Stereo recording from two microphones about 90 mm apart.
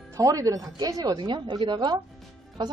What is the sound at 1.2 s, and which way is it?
Speech, 55° right (ahead or behind).